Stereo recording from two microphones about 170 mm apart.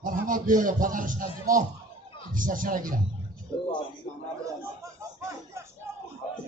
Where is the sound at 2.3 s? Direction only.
55° right (ahead or behind).